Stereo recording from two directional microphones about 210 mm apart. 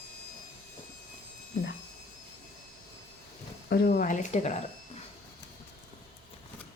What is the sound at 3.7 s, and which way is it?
Speech, 40° left (ahead or behind).